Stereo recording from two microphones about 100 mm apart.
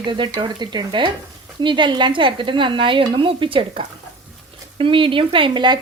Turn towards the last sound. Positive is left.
turn(degrees=-50)  # may be behind; listen again after turning